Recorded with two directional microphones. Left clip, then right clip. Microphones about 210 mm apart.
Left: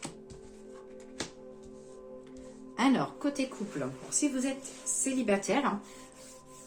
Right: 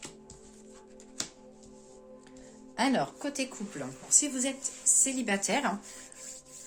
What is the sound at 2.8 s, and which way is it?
Speech, 45° right (ahead or behind).